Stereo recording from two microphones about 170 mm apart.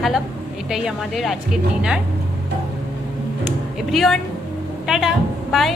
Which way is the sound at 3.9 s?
Centre (ahead or behind).